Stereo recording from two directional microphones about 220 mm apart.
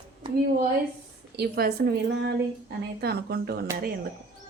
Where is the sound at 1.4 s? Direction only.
45° right (ahead or behind).